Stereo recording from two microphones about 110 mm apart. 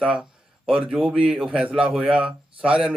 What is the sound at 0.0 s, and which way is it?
A man's voice, 10° right (ahead or behind).